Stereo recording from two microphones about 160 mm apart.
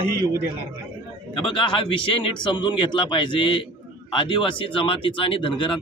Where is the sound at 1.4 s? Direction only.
30° left (ahead or behind).